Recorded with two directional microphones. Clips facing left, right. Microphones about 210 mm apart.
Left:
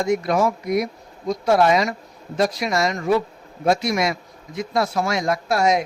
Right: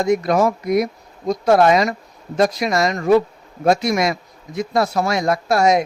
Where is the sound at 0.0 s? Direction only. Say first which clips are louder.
Right 3 dB; 40° right (ahead or behind).